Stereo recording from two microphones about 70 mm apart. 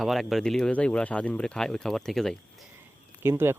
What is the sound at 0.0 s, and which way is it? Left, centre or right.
Speech, centre.